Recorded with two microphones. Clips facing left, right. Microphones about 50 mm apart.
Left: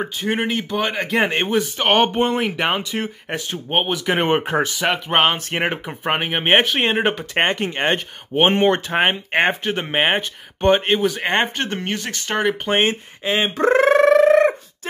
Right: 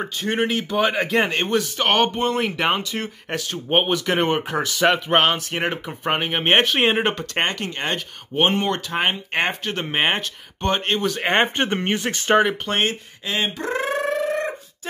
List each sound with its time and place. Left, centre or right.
0.0 s a man's voice: centre
1.6 s speech: centre
2.4 s speech: centre
4.3 s speech: left
4.7 s a man's voice: centre
5.5 s speech: centre
7.3 s speech: left
11.0 s a man's voice: centre
11.3 s speech: centre
12.1 s speech: right
12.6 s speech: left
13.6 s a sound: left